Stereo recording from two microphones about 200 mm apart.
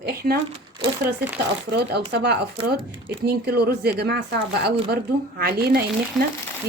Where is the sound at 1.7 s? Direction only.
55° right (ahead or behind).